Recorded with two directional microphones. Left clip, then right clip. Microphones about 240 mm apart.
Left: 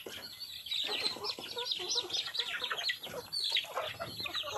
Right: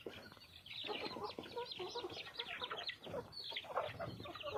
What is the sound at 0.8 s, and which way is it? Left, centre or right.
Chicken, right.